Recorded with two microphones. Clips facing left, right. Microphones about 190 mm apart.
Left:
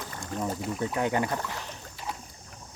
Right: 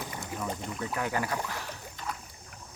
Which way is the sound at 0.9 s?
25° left (ahead or behind).